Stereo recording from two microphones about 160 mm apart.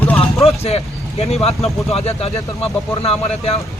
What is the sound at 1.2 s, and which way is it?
Speech, 40° left (ahead or behind).